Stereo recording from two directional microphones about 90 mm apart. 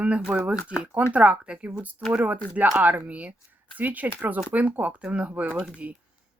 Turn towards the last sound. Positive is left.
turn(degrees=-15)  # may be behind; listen again after turning